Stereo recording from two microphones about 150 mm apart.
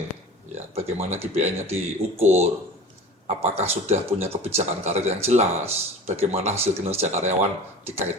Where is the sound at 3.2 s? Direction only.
45° right (ahead or behind).